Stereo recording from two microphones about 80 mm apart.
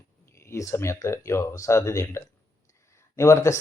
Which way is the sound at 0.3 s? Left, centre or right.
Left.